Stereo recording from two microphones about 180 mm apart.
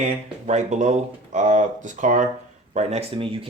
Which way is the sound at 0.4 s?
40° right (ahead or behind).